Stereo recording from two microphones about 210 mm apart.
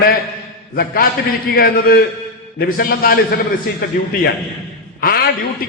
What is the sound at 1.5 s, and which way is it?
A man's voice, 45° left (ahead or behind).